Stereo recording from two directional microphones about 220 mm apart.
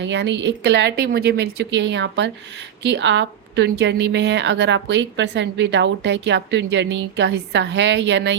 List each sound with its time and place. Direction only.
0.0 s a woman's voice: 55° right (ahead or behind)